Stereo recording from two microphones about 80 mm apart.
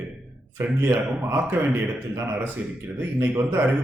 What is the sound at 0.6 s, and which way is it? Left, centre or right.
A man's voice, right.